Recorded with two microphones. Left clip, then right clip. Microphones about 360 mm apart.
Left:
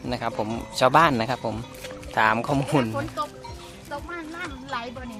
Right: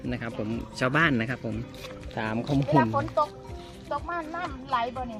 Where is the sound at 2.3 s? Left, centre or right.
Left.